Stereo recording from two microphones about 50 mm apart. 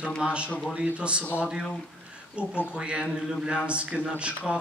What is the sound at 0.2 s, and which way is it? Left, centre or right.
A man's voice, right.